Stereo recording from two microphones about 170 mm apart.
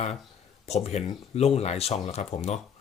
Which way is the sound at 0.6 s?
40° left (ahead or behind).